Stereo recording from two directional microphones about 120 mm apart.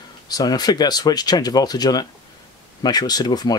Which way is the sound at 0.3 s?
35° left (ahead or behind).